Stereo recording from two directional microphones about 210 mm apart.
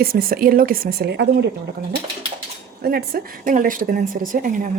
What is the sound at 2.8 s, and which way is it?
Speech, 45° right (ahead or behind).